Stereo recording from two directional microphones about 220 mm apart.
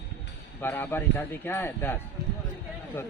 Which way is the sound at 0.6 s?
10° left (ahead or behind).